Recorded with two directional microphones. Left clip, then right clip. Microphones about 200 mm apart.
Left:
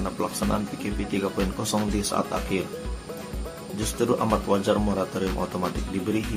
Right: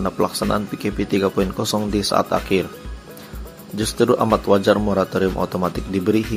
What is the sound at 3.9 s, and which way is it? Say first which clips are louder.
Speech: right 7 dB; 30° right (ahead or behind).